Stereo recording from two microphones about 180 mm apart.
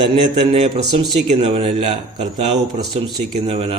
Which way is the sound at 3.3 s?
35° right (ahead or behind).